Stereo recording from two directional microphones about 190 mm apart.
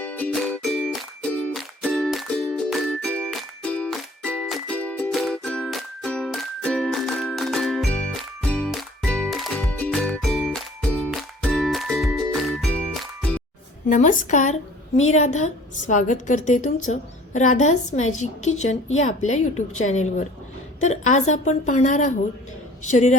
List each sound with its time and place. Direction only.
0.0 s music: 10° left (ahead or behind)
13.9 s a woman's voice: 45° left (ahead or behind)